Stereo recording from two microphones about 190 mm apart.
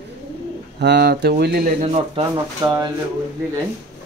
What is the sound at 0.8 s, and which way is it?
Speech, 60° right (ahead or behind).